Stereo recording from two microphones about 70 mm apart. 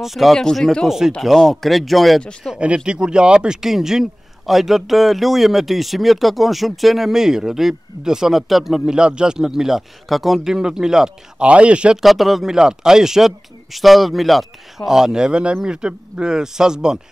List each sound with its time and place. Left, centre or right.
0.0 s speech: centre
0.8 s speech: centre
2.4 s speech: centre
12.0 s speech: centre